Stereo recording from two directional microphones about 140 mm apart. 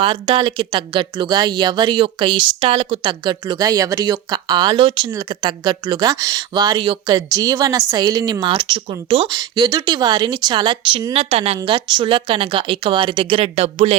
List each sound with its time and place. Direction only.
0.0 s speech: 35° right (ahead or behind)